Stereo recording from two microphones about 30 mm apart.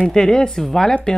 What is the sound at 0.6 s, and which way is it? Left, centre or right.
Speech, centre.